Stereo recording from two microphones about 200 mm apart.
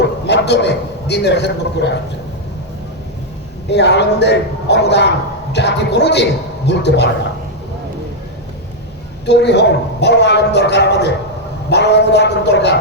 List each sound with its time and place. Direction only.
0.3 s a man's voice: 55° left (ahead or behind)
3.7 s a man's voice: 60° left (ahead or behind)
9.2 s a man's voice: 60° left (ahead or behind)